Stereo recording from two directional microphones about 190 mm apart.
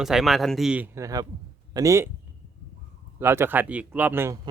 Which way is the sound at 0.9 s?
20° right (ahead or behind).